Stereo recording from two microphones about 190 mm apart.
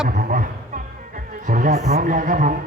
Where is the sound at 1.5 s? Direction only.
45° right (ahead or behind).